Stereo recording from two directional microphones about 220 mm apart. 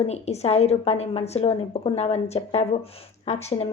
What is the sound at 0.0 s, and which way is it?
A woman's voice, 30° left (ahead or behind).